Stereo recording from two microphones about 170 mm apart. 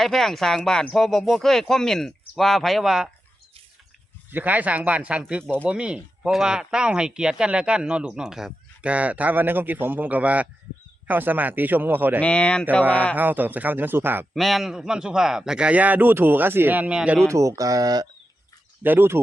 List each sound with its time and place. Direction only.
0.0 s speech: centre (ahead or behind)
4.3 s a man's voice: 10° right (ahead or behind)
12.2 s speech: 5° left (ahead or behind)
13.1 s a man's voice: 10° right (ahead or behind)
14.3 s speech: centre (ahead or behind)
17.2 s speech: 15° right (ahead or behind)
18.8 s a man's voice: 10° right (ahead or behind)